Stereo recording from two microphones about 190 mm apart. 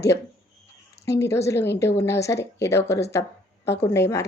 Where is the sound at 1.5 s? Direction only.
15° left (ahead or behind).